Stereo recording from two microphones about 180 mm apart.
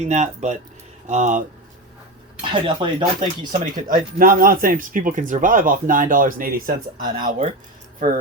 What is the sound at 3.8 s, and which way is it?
Speech, 50° right (ahead or behind).